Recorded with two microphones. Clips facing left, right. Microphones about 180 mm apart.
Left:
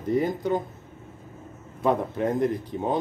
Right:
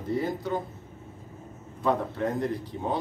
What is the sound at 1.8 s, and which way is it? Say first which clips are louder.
A man's voice: left 3 dB; 15° left (ahead or behind).